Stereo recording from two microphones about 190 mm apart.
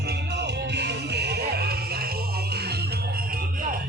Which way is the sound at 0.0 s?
60° right (ahead or behind).